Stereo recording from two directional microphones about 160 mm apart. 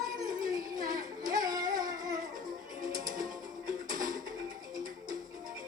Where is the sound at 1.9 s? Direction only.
60° right (ahead or behind).